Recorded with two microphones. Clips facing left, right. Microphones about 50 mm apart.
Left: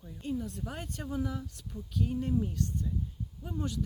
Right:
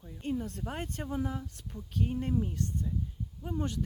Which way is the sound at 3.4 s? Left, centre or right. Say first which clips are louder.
Right 1 dB; right.